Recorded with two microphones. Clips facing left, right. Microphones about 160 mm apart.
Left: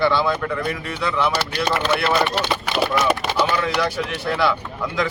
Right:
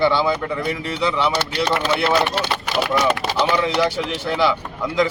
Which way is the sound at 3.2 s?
25° right (ahead or behind).